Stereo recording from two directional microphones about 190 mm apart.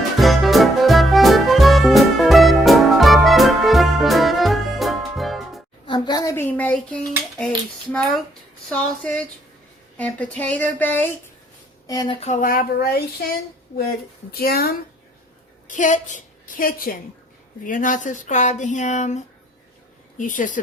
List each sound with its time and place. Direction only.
0.2 s music: centre (ahead or behind)
5.8 s dishes: 25° left (ahead or behind); by 7.5 s 5° left (ahead or behind)
8.7 s speech: 5° left (ahead or behind)
11.9 s speech: 20° left (ahead or behind)
12.2 s speech: 40° left (ahead or behind)
14.3 s speech: 55° left (ahead or behind)
15.6 s a woman's voice: 40° left (ahead or behind)